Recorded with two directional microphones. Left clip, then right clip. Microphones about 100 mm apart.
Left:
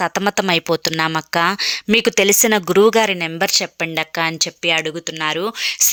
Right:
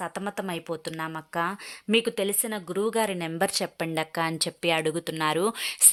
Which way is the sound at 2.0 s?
45° left (ahead or behind).